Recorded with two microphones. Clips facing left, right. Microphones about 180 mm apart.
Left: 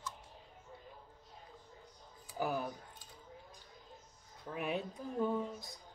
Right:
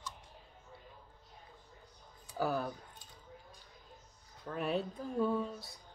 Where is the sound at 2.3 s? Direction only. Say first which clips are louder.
Right 2 dB; 15° left (ahead or behind).